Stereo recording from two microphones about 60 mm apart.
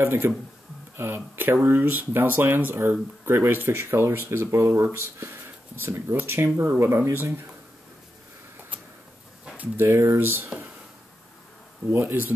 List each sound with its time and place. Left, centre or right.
0.0 s speech: right
9.8 s speech: right
11.9 s speech: right